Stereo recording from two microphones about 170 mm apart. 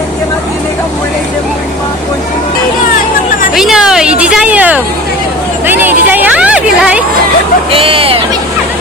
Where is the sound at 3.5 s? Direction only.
5° right (ahead or behind).